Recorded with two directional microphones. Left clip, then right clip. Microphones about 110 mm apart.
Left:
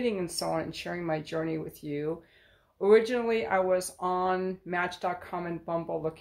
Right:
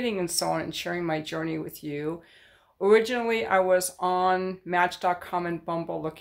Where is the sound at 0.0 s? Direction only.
25° right (ahead or behind).